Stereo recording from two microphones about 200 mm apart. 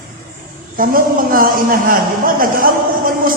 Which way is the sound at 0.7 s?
45° right (ahead or behind).